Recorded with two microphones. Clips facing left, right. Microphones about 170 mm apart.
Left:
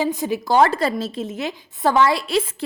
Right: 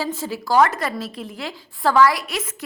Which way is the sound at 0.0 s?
20° left (ahead or behind).